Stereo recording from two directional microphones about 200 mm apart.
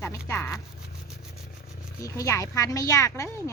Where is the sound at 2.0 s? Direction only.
15° left (ahead or behind).